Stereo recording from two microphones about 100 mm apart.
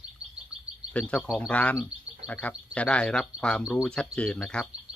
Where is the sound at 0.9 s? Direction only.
10° left (ahead or behind).